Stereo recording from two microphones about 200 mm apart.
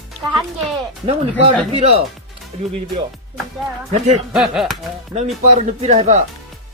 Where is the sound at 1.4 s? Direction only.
30° right (ahead or behind).